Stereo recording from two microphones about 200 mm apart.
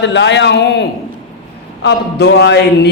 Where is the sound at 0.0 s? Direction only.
60° left (ahead or behind).